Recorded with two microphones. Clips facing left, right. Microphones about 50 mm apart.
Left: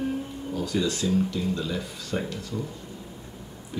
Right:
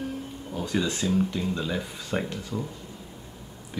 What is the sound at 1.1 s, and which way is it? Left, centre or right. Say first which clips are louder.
Speech: left 1 dB; centre.